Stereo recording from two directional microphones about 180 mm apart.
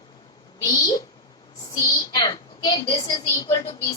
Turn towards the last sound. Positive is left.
turn(degrees=20)  # may be behind; listen again after turning